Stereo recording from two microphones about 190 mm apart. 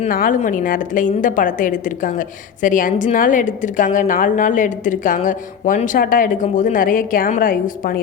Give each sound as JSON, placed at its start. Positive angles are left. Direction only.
{"t": 0.1, "sound": "a woman's voice", "side_deg": 45}